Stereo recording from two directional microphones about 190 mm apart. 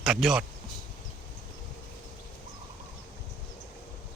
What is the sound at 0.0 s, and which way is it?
Speech, centre (ahead or behind).